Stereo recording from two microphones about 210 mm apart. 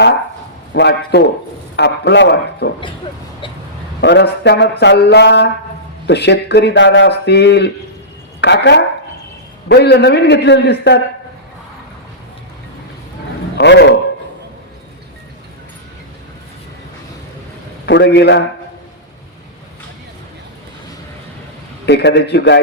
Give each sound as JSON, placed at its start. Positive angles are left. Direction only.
{"t": 0.7, "sound": "a man's voice", "side_deg": 55}
{"t": 4.0, "sound": "a woman's voice", "side_deg": 55}
{"t": 13.6, "sound": "a man's voice", "side_deg": 55}
{"t": 17.8, "sound": "speech", "side_deg": 55}
{"t": 21.8, "sound": "speech", "side_deg": 55}